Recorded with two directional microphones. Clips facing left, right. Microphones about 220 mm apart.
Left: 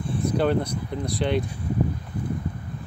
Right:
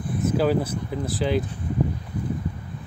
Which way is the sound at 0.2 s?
5° right (ahead or behind).